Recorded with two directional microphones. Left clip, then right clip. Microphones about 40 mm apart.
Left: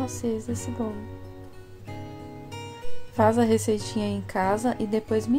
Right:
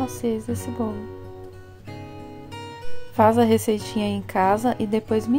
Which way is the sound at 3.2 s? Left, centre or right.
Right.